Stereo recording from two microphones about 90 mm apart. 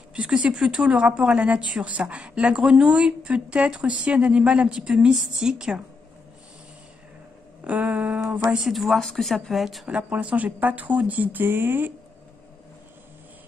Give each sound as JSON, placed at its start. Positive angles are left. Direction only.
{"t": 0.1, "sound": "a woman's voice", "side_deg": -10}
{"t": 7.6, "sound": "a woman's voice", "side_deg": -15}
{"t": 8.5, "sound": "speech", "side_deg": -5}
{"t": 9.8, "sound": "a woman's voice", "side_deg": -10}